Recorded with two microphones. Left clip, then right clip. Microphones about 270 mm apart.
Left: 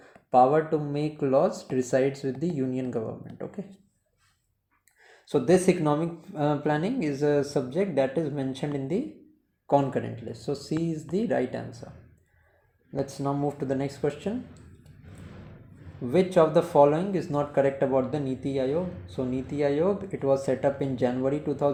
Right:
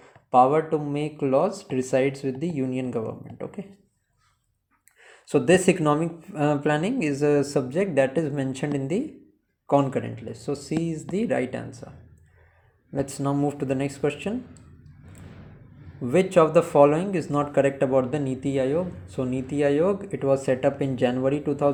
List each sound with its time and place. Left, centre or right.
0.0 s speech: centre
4.9 s speech: right
9.6 s speech: centre
12.9 s speech: right
16.0 s speech: right